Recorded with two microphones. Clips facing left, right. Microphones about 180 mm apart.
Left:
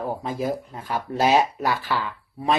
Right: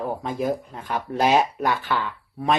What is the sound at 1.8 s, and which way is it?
Speech, 35° left (ahead or behind).